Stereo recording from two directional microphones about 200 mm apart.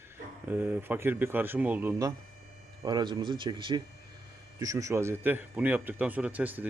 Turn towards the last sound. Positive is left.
turn(degrees=-10)  # may be behind; listen again after turning